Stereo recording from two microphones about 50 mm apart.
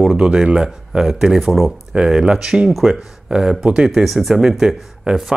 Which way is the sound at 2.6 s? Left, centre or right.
Centre.